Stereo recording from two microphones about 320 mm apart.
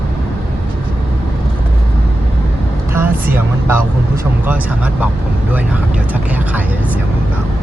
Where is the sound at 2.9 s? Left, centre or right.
Centre.